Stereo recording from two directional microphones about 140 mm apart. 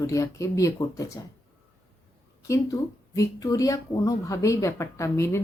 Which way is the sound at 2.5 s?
25° left (ahead or behind).